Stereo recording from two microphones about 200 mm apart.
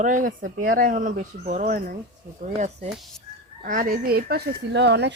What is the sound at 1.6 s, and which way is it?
Speech, 50° right (ahead or behind).